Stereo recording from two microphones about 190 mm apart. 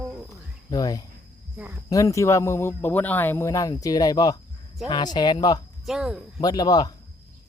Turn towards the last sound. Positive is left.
turn(degrees=20)  # may be behind; listen again after turning